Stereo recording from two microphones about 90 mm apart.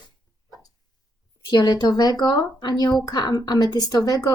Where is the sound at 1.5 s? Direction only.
50° left (ahead or behind).